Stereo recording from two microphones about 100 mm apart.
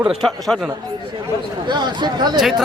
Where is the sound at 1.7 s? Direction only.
50° right (ahead or behind).